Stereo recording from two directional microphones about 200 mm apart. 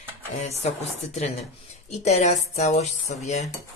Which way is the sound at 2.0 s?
35° left (ahead or behind).